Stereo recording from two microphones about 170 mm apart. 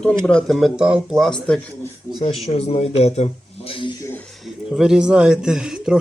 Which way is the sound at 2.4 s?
35° left (ahead or behind).